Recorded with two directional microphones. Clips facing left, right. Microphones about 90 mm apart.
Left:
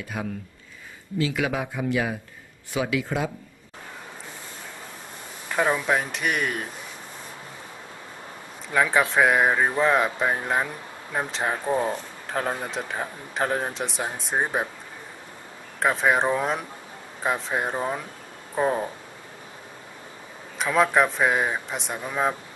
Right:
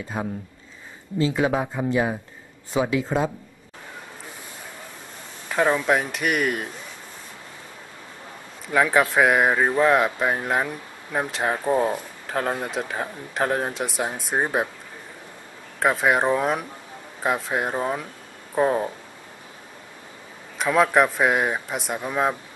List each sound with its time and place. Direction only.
0.2 s speech: 30° right (ahead or behind)
5.5 s speech: centre (ahead or behind)
8.7 s speech: centre (ahead or behind)
15.8 s speech: 5° right (ahead or behind)
20.5 s speech: centre (ahead or behind)